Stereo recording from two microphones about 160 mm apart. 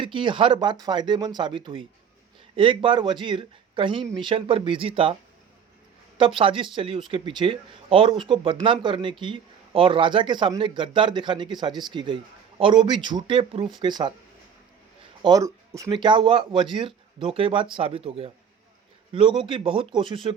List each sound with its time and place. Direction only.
0.0 s speech: 30° right (ahead or behind)
6.1 s speech: 35° right (ahead or behind)
15.2 s speech: 25° right (ahead or behind)
15.9 s speech: 30° right (ahead or behind)